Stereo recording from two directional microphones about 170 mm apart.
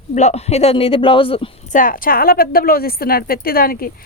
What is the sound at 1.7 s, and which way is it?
Speech, 55° left (ahead or behind).